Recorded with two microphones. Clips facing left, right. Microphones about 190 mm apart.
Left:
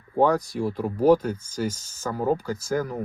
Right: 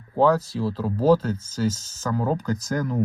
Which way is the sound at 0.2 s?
15° left (ahead or behind).